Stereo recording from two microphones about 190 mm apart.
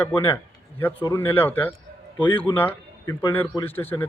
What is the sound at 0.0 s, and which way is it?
Speech, 10° left (ahead or behind).